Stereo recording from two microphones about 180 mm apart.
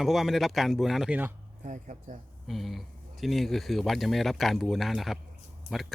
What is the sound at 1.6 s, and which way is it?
Speech, 45° right (ahead or behind).